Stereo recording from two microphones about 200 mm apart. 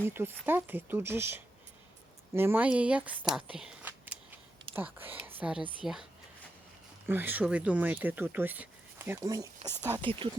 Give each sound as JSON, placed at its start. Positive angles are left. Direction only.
{"t": 0.0, "sound": "speech", "side_deg": -10}
{"t": 3.3, "sound": "a sound", "side_deg": -5}
{"t": 4.7, "sound": "speech", "side_deg": -10}
{"t": 7.1, "sound": "speech", "side_deg": -10}